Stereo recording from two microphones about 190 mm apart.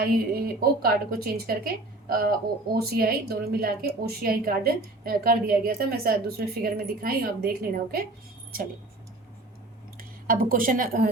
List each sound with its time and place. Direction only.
0.0 s a woman's voice: 55° right (ahead or behind)
10.0 s a woman's voice: 50° right (ahead or behind)